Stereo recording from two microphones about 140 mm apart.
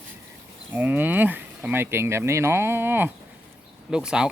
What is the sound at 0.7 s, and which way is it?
Speech, 10° right (ahead or behind).